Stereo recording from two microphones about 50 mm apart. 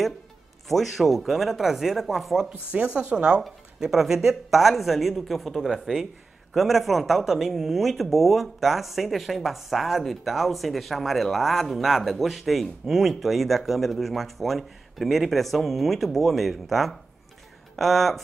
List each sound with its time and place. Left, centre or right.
0.7 s speech: centre
2.7 s speech: right
3.8 s speech: centre